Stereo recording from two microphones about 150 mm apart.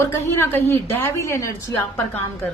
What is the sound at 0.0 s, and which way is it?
A woman's voice, 15° left (ahead or behind).